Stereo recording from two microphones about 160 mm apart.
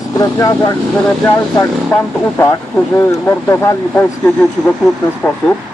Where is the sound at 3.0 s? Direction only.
15° left (ahead or behind).